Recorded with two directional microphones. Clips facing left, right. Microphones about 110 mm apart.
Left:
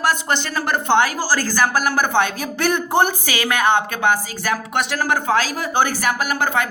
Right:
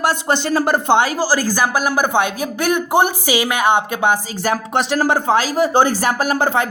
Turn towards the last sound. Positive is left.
turn(degrees=-30)  # may be behind; listen again after turning